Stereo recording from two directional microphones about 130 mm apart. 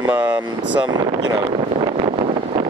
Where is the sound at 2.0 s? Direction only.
50° right (ahead or behind).